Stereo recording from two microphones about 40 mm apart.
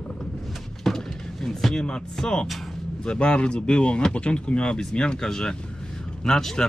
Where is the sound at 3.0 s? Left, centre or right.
Left.